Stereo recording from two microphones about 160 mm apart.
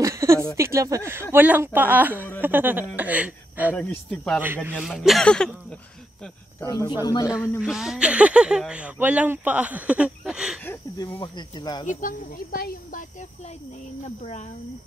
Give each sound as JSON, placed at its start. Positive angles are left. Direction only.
{"t": 0.0, "sound": "a sound", "side_deg": -20}
{"t": 0.6, "sound": "speech", "side_deg": -20}
{"t": 3.7, "sound": "speech", "side_deg": 10}
{"t": 4.6, "sound": "speech", "side_deg": -5}
{"t": 6.6, "sound": "speech", "side_deg": 20}
{"t": 7.6, "sound": "speech", "side_deg": -5}
{"t": 10.6, "sound": "insect", "side_deg": 15}
{"t": 11.1, "sound": "speech", "side_deg": 30}
{"t": 11.8, "sound": "speech", "side_deg": 55}
{"t": 14.0, "sound": "speech", "side_deg": 45}